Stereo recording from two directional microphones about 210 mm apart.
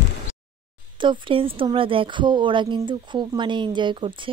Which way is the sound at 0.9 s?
25° right (ahead or behind).